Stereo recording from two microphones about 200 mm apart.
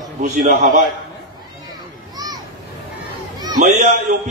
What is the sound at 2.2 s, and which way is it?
Children playing, 20° right (ahead or behind).